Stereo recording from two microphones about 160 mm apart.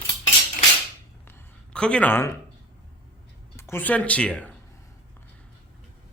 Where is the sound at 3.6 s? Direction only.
15° left (ahead or behind).